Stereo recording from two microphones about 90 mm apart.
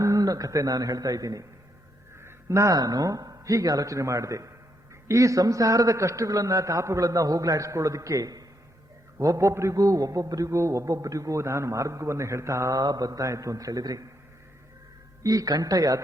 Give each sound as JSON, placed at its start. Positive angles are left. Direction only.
{"t": 0.0, "sound": "a man's voice", "side_deg": -40}
{"t": 15.2, "sound": "speech", "side_deg": -40}